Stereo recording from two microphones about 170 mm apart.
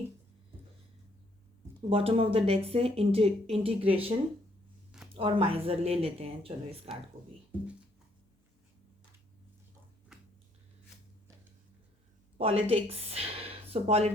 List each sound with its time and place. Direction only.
1.9 s a woman's voice: 35° right (ahead or behind)
5.1 s a woman's voice: 30° right (ahead or behind)
10.1 s a sound: 5° right (ahead or behind)
12.4 s speech: 35° right (ahead or behind)